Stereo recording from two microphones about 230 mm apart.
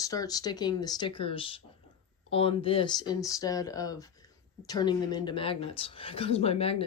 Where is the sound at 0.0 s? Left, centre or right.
Centre.